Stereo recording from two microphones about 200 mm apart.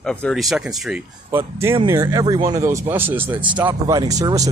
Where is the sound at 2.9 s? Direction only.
10° right (ahead or behind).